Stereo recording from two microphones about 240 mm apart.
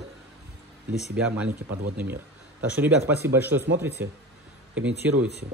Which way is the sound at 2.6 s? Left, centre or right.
Centre.